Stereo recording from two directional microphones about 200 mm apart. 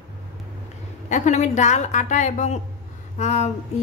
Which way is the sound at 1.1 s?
35° left (ahead or behind).